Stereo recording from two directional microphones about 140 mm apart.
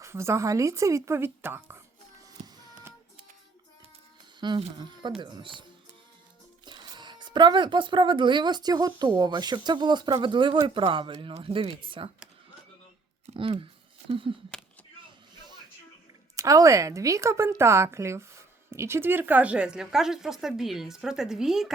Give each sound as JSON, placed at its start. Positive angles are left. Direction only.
{"t": 0.0, "sound": "a woman's voice", "side_deg": -20}
{"t": 4.4, "sound": "speech", "side_deg": -35}
{"t": 6.7, "sound": "speech", "side_deg": -30}
{"t": 13.2, "sound": "speech", "side_deg": -45}
{"t": 16.3, "sound": "a woman's voice", "side_deg": -25}